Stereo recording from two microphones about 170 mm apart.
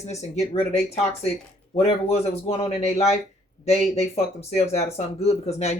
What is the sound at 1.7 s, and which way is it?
Speech, 35° left (ahead or behind).